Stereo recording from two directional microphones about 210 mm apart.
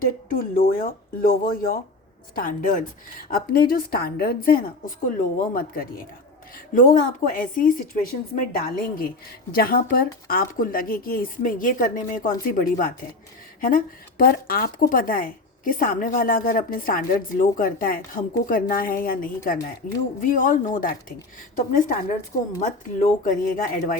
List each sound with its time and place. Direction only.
0.0 s a woman's voice: 40° left (ahead or behind)